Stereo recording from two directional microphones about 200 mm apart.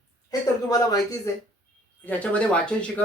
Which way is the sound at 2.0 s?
5° left (ahead or behind).